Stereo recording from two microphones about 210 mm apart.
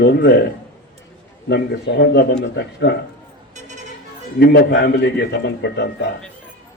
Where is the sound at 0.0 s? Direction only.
50° left (ahead or behind).